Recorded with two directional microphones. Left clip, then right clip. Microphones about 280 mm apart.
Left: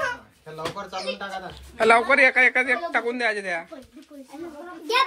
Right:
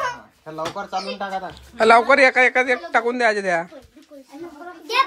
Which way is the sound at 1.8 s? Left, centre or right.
Centre.